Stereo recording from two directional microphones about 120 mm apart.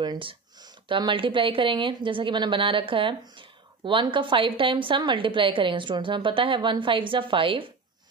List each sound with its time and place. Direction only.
0.0 s speech: 40° right (ahead or behind)